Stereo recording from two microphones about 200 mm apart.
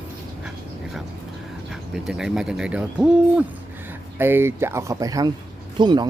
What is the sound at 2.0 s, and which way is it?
Speech, 5° right (ahead or behind).